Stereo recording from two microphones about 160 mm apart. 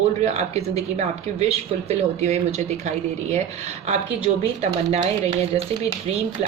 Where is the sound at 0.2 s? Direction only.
45° right (ahead or behind).